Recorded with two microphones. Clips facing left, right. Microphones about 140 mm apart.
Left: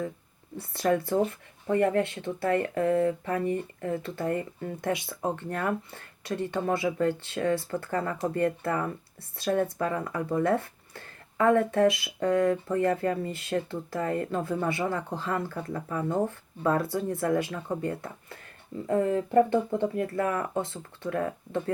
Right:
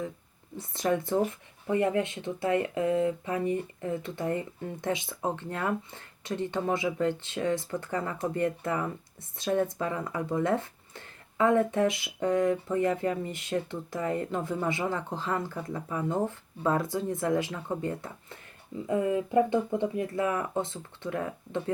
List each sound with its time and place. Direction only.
0.5 s speech: 20° right (ahead or behind)